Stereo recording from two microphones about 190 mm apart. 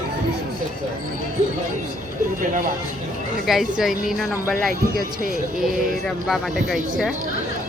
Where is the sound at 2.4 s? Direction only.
45° right (ahead or behind).